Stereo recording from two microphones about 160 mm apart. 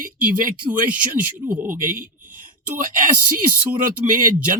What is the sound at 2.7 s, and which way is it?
Speech, 55° right (ahead or behind).